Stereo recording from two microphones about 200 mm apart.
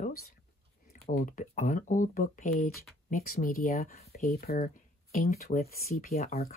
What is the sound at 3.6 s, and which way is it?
Speech, 40° left (ahead or behind).